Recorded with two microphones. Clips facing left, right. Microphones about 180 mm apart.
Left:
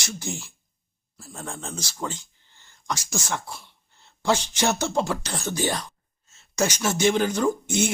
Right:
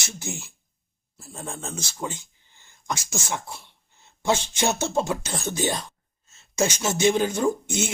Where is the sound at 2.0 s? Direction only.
10° right (ahead or behind).